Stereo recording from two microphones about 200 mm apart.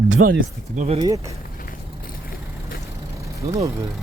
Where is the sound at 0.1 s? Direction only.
75° right (ahead or behind).